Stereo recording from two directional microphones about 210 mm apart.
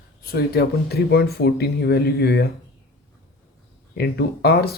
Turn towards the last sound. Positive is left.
turn(degrees=50)  # may be behind; listen again after turning